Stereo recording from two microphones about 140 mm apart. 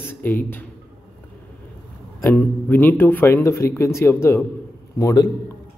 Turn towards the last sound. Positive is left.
turn(degrees=20)  # may be behind; listen again after turning